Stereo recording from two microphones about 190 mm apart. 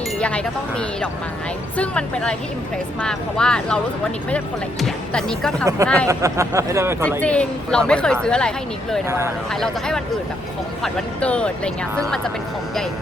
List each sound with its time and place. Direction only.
0.2 s a woman's voice: 5° left (ahead or behind)
5.6 s speech: 15° right (ahead or behind)
7.3 s a woman's voice: 5° left (ahead or behind)
9.0 s speech: 15° right (ahead or behind)
9.5 s a woman's voice: 5° left (ahead or behind)